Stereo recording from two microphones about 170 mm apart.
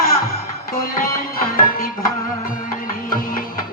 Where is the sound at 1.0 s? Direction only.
60° left (ahead or behind).